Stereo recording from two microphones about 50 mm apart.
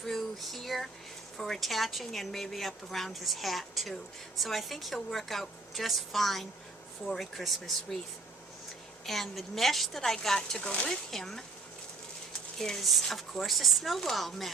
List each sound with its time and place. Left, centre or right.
0.0 s a sound: centre
1.4 s a woman's voice: centre
9.0 s a woman's voice: centre
10.6 s speech: left
10.8 s speech: centre
12.5 s a woman's voice: centre